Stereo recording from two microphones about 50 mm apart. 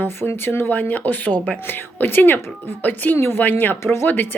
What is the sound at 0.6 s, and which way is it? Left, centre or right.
Speech, left.